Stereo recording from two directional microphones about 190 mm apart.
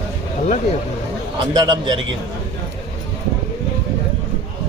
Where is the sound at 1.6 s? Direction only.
25° right (ahead or behind).